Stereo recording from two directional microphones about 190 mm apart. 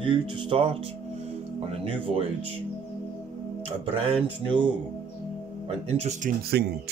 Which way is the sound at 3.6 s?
30° right (ahead or behind).